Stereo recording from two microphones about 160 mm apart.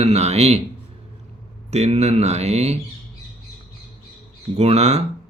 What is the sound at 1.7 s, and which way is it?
Speech, 45° right (ahead or behind).